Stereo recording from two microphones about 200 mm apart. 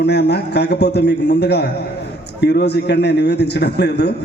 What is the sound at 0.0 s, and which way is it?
A man's voice, 55° left (ahead or behind).